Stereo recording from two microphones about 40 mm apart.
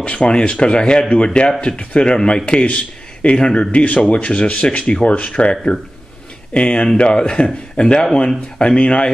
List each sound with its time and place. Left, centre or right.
0.0 s speech: left